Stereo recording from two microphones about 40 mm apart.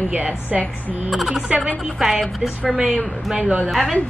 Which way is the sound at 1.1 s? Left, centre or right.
Centre.